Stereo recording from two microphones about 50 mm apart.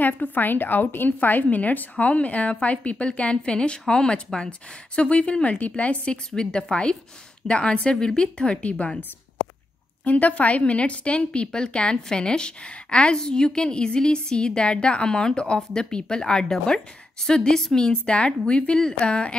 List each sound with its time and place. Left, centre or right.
0.0 s a woman's voice: left
10.0 s a woman's voice: left